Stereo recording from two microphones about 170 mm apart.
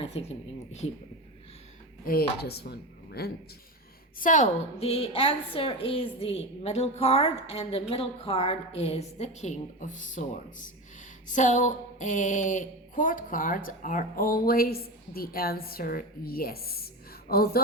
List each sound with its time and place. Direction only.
0.0 s a woman's voice: 35° left (ahead or behind)
2.4 s speech: 70° left (ahead or behind)
4.2 s a woman's voice: 50° left (ahead or behind)
4.8 s a woman's voice: 35° left (ahead or behind)
11.3 s speech: 45° left (ahead or behind); by 17.6 s 60° left (ahead or behind)